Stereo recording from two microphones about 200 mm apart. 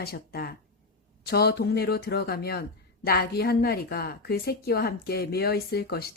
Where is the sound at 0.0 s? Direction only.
50° left (ahead or behind).